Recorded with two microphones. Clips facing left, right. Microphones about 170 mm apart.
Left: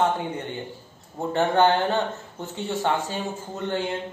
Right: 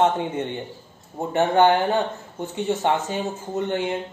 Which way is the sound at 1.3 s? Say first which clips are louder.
Right 2 dB; 15° right (ahead or behind).